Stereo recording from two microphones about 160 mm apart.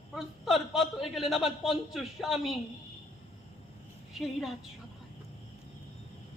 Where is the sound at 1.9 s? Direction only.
Centre (ahead or behind).